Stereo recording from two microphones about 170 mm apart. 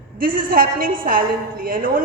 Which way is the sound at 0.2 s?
55° right (ahead or behind).